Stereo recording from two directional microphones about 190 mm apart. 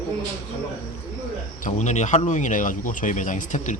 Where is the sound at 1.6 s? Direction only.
40° left (ahead or behind).